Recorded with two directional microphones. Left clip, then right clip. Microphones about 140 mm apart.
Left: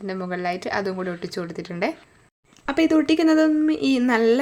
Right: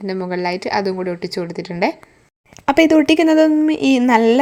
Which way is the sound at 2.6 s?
50° right (ahead or behind).